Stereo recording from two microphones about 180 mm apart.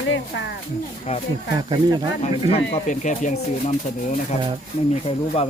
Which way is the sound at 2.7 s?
45° left (ahead or behind).